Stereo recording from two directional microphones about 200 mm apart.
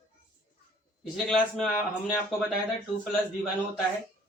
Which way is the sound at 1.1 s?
Centre (ahead or behind).